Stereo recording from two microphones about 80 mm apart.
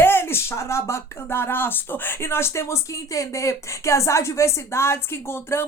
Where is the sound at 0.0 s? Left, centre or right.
Left.